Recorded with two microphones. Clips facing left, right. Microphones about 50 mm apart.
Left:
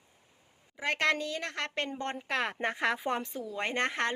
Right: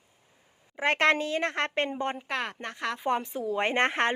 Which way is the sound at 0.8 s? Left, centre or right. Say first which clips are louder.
Right 5 dB; right.